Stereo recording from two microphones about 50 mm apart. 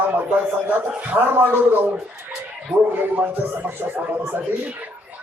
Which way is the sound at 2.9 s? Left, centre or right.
Right.